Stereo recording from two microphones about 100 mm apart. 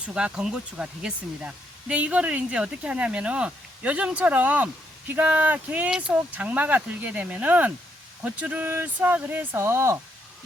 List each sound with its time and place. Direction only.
0.1 s speech: 10° right (ahead or behind); by 10.0 s 25° right (ahead or behind)